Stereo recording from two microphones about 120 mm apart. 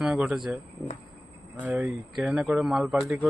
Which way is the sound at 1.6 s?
10° right (ahead or behind).